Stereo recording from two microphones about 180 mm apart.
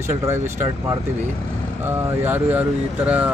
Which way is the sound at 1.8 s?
10° right (ahead or behind).